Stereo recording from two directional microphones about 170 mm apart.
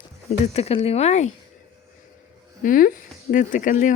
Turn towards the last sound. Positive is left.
turn(degrees=50)  # may be behind; listen again after turning